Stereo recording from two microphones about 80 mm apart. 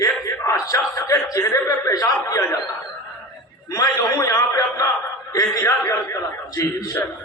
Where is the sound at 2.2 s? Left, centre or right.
Left.